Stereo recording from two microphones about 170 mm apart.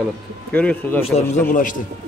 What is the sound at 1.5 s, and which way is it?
Speech, 50° left (ahead or behind).